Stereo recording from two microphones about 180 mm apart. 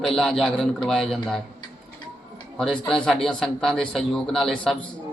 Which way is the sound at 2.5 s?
5° left (ahead or behind).